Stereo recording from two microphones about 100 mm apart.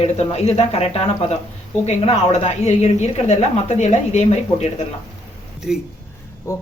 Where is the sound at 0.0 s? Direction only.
90° left.